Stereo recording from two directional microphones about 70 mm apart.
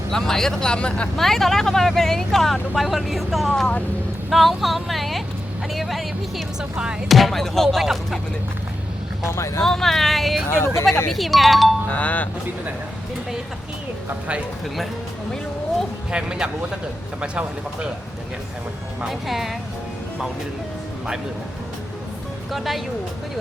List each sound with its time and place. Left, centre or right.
0.1 s speech: centre
1.1 s speech: centre
9.3 s speech: left
9.6 s speech: centre
10.5 s speech: left
11.1 s speech: centre
11.9 s speech: left
16.1 s speech: centre
19.0 s speech: centre
22.5 s speech: centre